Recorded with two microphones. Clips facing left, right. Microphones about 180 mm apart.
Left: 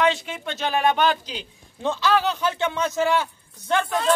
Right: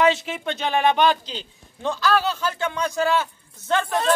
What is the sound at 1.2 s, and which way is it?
A man's voice, 15° left (ahead or behind).